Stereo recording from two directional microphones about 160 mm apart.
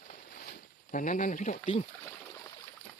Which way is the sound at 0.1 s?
65° left (ahead or behind).